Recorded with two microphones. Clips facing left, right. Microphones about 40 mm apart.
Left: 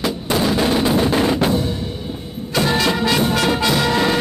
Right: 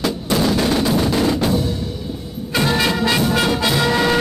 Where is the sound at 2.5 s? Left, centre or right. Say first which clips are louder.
Even; centre.